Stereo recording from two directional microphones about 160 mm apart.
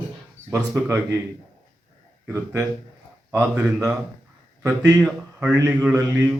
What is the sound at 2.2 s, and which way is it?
Speech, 20° right (ahead or behind).